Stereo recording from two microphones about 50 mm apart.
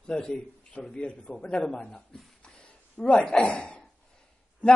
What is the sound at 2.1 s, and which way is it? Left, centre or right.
Speech, centre.